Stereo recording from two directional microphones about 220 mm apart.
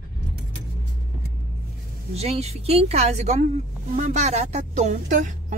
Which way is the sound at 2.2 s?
30° right (ahead or behind).